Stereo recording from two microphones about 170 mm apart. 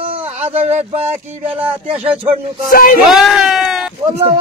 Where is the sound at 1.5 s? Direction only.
10° right (ahead or behind).